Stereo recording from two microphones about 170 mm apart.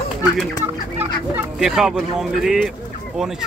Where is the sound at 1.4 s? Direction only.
5° right (ahead or behind).